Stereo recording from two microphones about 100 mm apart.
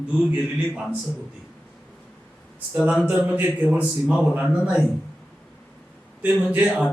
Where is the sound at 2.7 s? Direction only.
10° right (ahead or behind).